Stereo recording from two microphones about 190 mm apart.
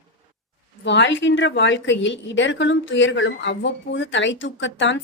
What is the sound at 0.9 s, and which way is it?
A woman's voice, 70° left (ahead or behind).